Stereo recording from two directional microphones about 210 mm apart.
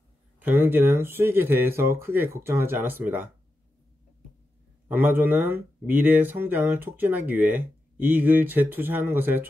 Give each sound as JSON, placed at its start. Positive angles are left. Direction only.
{"t": 0.4, "sound": "speech", "side_deg": -10}
{"t": 4.8, "sound": "speech", "side_deg": -10}